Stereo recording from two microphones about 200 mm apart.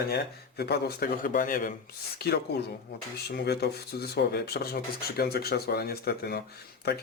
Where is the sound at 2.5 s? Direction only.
55° left (ahead or behind).